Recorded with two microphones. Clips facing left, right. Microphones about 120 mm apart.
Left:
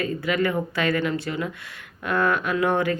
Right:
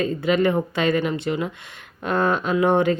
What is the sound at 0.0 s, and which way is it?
Speech, 25° right (ahead or behind).